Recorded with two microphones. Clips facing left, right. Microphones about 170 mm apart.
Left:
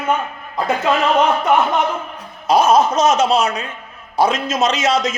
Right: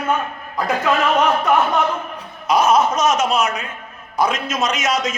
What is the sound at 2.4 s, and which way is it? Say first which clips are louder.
A man's voice: left 2 dB; 30° left (ahead or behind).